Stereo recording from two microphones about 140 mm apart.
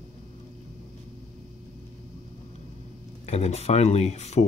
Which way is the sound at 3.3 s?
50° left (ahead or behind).